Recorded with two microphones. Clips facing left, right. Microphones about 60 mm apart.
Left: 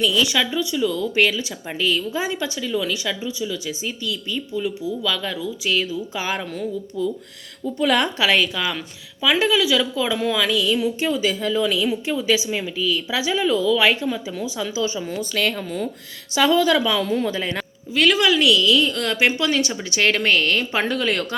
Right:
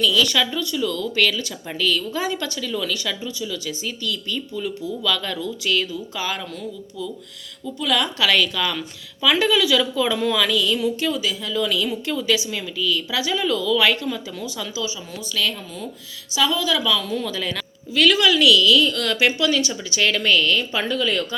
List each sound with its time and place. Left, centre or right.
0.0 s a woman's voice: left
6.1 s a woman's voice: left
8.2 s speech: centre
11.1 s speech: left
11.6 s a woman's voice: centre
14.8 s a woman's voice: left